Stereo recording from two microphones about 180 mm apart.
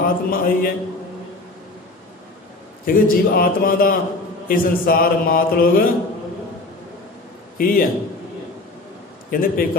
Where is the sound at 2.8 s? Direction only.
55° left (ahead or behind).